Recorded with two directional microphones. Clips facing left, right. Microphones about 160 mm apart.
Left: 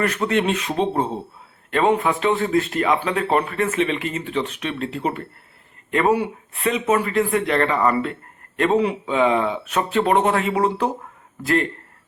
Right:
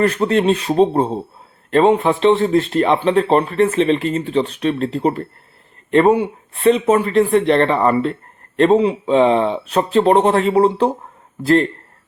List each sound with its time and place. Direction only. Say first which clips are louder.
0.0 s speech: right 5 dB; 30° right (ahead or behind)